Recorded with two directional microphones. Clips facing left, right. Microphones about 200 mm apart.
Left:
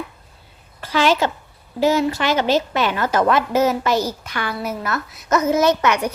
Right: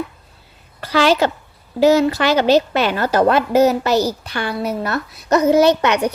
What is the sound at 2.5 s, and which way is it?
A woman's voice, 35° right (ahead or behind).